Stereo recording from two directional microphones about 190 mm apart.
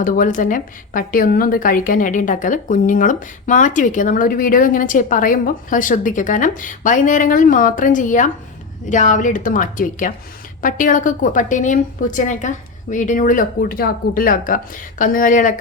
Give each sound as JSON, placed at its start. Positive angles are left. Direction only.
{"t": 0.0, "sound": "a woman's voice", "side_deg": 45}